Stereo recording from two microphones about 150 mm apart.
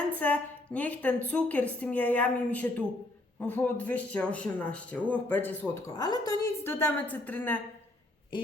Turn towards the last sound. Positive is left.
turn(degrees=10)  # may be behind; listen again after turning